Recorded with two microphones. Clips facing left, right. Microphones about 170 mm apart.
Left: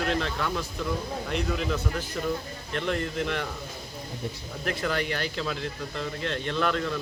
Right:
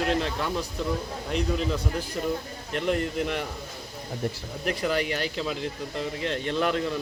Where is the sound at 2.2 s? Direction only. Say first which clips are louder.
Right 1 dB; 20° right (ahead or behind).